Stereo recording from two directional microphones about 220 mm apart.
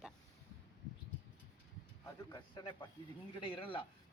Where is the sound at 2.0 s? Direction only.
20° left (ahead or behind).